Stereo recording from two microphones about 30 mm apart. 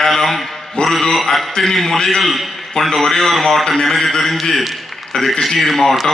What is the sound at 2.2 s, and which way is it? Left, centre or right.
A man's voice, centre.